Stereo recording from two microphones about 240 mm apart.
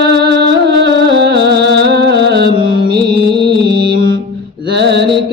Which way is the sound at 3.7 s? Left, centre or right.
Right.